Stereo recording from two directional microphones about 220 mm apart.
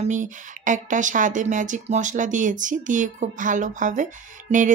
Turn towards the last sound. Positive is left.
turn(degrees=-30)  # may be behind; listen again after turning